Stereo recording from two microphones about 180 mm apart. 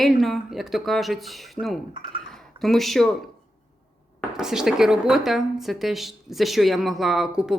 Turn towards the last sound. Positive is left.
turn(degrees=-5)  # may be behind; listen again after turning